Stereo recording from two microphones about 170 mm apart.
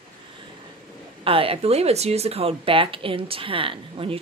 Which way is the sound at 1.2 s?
35° right (ahead or behind).